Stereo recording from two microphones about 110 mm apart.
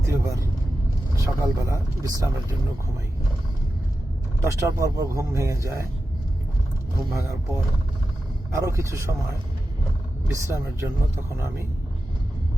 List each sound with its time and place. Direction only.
0.1 s vehicle: 30° right (ahead or behind)
1.1 s speech: 30° right (ahead or behind)
4.4 s speech: 30° right (ahead or behind)
6.9 s speech: 25° right (ahead or behind)
8.6 s speech: 25° right (ahead or behind)
10.3 s speech: 30° right (ahead or behind)